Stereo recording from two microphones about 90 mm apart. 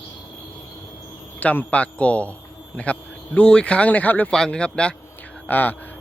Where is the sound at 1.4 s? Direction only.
15° left (ahead or behind).